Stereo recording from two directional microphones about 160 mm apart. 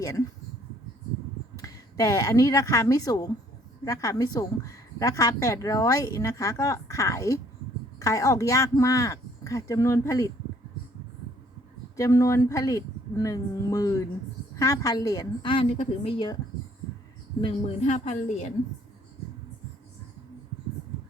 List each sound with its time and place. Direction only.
0.0 s speech: 20° left (ahead or behind)
1.5 s a woman's voice: 20° left (ahead or behind)
11.9 s a woman's voice: 20° left (ahead or behind)
17.4 s speech: 40° left (ahead or behind)